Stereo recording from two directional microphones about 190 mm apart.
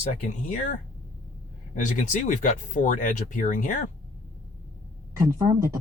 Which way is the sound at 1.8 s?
45° left (ahead or behind).